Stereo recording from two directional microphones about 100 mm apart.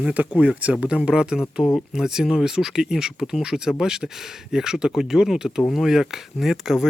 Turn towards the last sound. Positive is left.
turn(degrees=0)  # may be behind; listen again after turning